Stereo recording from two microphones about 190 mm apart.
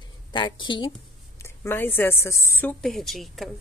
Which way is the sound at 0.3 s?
25° left (ahead or behind).